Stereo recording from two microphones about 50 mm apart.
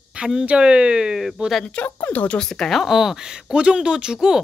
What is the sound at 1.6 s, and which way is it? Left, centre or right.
Speech, left.